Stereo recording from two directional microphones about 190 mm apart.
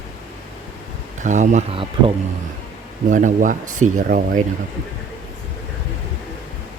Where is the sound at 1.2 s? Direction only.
40° right (ahead or behind).